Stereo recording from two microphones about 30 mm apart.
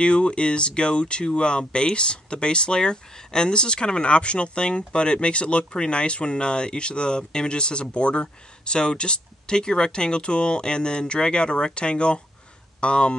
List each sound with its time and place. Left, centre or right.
0.0 s speech: left